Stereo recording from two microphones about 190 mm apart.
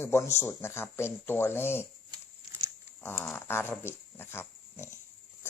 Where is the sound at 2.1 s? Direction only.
20° right (ahead or behind).